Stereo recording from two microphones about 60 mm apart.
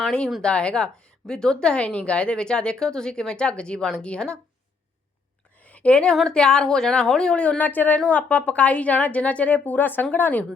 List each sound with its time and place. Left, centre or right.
0.4 s a woman's voice: centre
5.5 s a sound: left
6.1 s a woman's voice: centre
7.6 s speech: left
7.9 s a woman's voice: centre